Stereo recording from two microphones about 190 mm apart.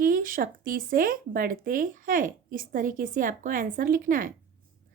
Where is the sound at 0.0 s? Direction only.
45° right (ahead or behind).